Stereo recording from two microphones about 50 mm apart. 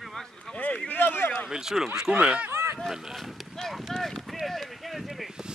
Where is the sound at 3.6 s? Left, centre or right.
Centre.